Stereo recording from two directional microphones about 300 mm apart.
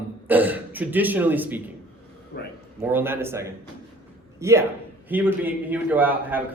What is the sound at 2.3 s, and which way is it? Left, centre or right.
Speech, left.